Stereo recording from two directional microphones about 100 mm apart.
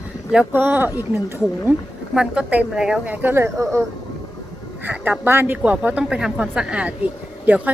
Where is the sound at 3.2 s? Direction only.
25° right (ahead or behind).